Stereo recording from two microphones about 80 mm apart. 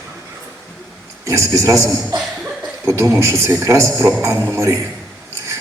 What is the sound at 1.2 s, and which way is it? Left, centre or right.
A man's voice, right.